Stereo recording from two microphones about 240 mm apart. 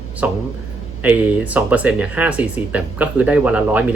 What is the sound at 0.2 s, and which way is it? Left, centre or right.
Speech, centre.